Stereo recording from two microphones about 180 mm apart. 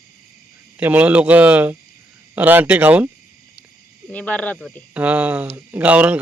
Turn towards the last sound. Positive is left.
turn(degrees=-10)  # may be behind; listen again after turning